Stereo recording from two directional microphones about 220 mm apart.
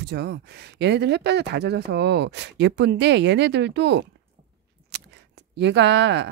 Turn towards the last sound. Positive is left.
turn(degrees=-50)  # may be behind; listen again after turning